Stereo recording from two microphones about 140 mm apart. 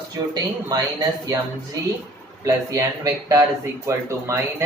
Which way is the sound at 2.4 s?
25° right (ahead or behind).